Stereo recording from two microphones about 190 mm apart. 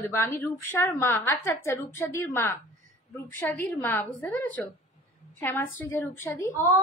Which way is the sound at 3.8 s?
10° left (ahead or behind).